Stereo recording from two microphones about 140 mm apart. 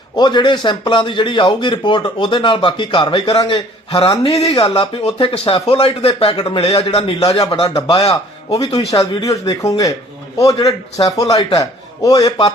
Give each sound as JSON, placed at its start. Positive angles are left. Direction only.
{"t": 0.2, "sound": "speech", "side_deg": 35}